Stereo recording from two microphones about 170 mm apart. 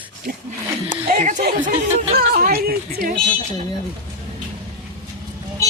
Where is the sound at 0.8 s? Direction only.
50° right (ahead or behind).